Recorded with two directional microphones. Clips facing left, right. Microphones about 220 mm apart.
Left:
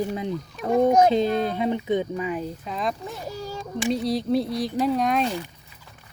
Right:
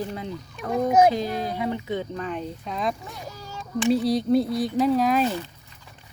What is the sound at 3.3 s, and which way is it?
Cat, 35° left (ahead or behind).